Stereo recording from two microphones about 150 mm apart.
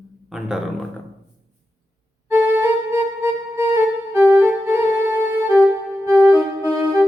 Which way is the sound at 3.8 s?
15° right (ahead or behind).